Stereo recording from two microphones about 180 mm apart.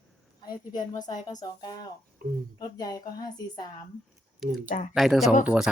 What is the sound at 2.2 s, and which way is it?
Speech, 55° right (ahead or behind).